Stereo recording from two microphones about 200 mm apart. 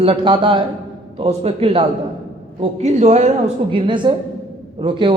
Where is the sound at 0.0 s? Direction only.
25° right (ahead or behind).